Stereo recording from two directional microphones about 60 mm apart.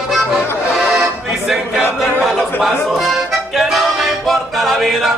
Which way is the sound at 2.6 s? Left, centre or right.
Centre.